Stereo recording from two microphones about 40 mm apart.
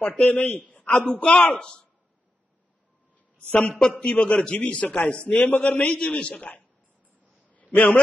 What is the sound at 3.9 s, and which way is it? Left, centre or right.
A man's voice, left.